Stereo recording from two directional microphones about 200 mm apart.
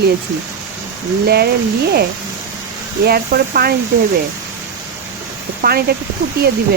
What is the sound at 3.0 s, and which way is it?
Speech, 50° right (ahead or behind).